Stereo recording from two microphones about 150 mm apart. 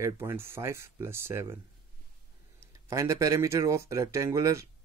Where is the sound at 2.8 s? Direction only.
20° right (ahead or behind).